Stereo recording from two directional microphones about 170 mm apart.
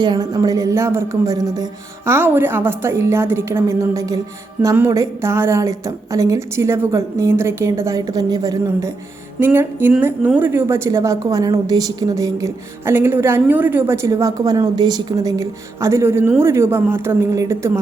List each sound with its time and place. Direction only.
0.0 s a woman's voice: 25° right (ahead or behind)